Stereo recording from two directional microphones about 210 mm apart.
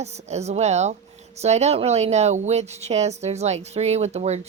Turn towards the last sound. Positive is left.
turn(degrees=-30)  # may be behind; listen again after turning